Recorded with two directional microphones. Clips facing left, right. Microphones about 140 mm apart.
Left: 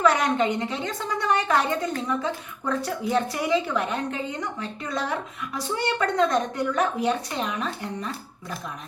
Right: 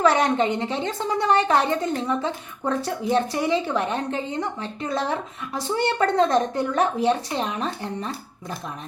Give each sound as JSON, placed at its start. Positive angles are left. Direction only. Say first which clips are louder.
{"t": 0.0, "sound": "a woman's voice", "louder": "right 2 dB", "side_deg": -30}